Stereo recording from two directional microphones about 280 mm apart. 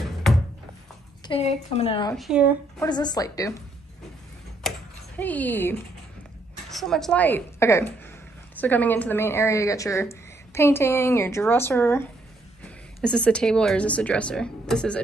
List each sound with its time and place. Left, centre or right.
1.2 s a woman's voice: left
2.1 s a woman's voice: centre
2.8 s speech: centre
4.6 s a sound: centre
6.7 s a woman's voice: centre